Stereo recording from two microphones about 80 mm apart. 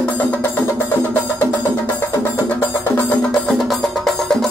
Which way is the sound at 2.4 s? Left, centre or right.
Left.